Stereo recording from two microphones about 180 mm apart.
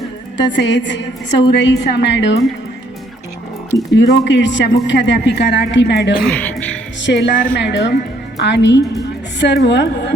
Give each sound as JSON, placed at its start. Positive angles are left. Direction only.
{"t": 0.3, "sound": "speech", "side_deg": 75}
{"t": 3.9, "sound": "speech", "side_deg": 80}
{"t": 6.2, "sound": "speech", "side_deg": 10}
{"t": 7.0, "sound": "speech", "side_deg": 75}
{"t": 7.3, "sound": "a woman's voice", "side_deg": 50}
{"t": 7.6, "sound": "speech", "side_deg": 75}